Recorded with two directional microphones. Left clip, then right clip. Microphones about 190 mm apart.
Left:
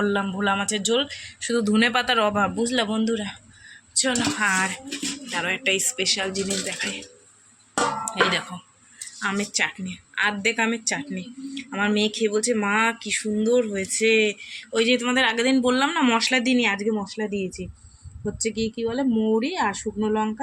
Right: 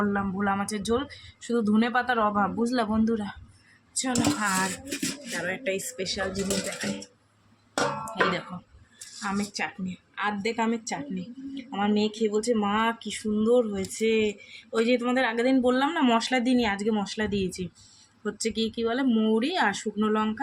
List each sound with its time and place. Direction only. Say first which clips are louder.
0.1 s speech: left 4 dB; centre (ahead or behind)
4.4 s speech: left 5 dB; centre (ahead or behind)
7.8 s a sound: left 4 dB; 15° left (ahead or behind)
9.2 s speech: left 6 dB; centre (ahead or behind); by 17.7 s 15° right (ahead or behind)
18.3 s speech: left 2 dB; centre (ahead or behind)